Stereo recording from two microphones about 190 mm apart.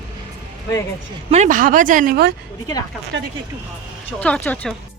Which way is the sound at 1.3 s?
40° right (ahead or behind).